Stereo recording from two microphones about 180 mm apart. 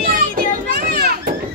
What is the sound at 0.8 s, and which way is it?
Children playing, 55° right (ahead or behind).